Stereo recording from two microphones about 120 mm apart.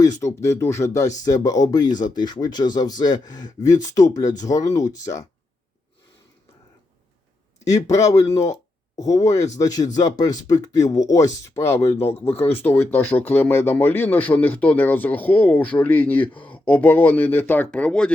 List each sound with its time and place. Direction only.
0.0 s speech: 25° left (ahead or behind)
7.9 s speech: 30° left (ahead or behind)
11.9 s speech: 55° left (ahead or behind)
12.6 s speech: 20° left (ahead or behind)